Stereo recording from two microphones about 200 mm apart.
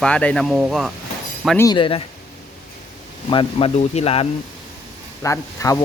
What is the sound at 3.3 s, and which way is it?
Speech, 25° left (ahead or behind).